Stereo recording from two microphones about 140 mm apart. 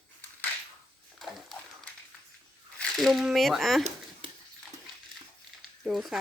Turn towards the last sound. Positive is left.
turn(degrees=0)  # may be behind; listen again after turning